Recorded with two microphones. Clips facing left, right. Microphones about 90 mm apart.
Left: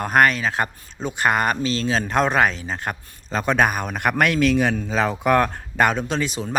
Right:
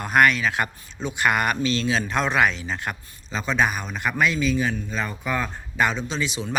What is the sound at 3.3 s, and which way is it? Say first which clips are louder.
A man's voice: left 4 dB; 55° left (ahead or behind).